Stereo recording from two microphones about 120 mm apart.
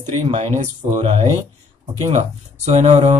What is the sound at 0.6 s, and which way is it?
Speech, 75° right (ahead or behind).